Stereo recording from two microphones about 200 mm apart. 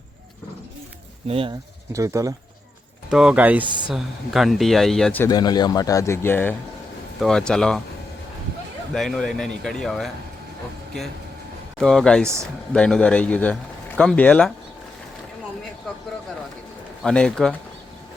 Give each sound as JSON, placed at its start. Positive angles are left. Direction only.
{"t": 1.3, "sound": "speech", "side_deg": -30}
{"t": 1.9, "sound": "speech", "side_deg": -15}
{"t": 3.1, "sound": "a man's voice", "side_deg": -5}
{"t": 5.3, "sound": "a man's voice", "side_deg": 20}
{"t": 8.9, "sound": "a man's voice", "side_deg": 0}
{"t": 11.8, "sound": "a man's voice", "side_deg": 0}
{"t": 17.0, "sound": "a man's voice", "side_deg": 5}